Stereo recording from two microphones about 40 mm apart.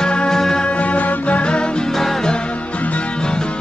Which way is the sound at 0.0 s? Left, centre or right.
Left.